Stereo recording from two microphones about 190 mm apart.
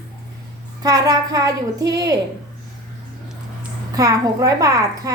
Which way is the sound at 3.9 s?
15° right (ahead or behind).